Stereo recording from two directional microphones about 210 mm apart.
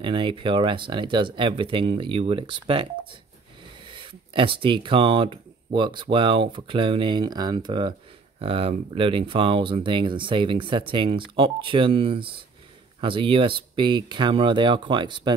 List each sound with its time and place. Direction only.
0.0 s speech: 20° right (ahead or behind)